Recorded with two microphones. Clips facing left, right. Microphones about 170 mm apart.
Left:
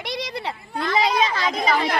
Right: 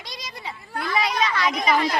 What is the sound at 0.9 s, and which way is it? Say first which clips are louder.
Speech: left 3 dB; 25° left (ahead or behind).